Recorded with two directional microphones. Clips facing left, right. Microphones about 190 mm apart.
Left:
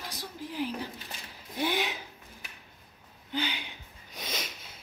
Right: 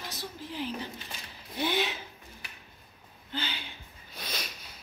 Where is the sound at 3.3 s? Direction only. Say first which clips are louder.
Left 4 dB; 15° left (ahead or behind).